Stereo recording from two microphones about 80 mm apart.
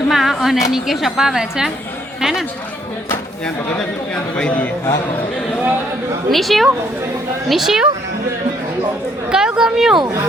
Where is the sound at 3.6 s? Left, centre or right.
Centre.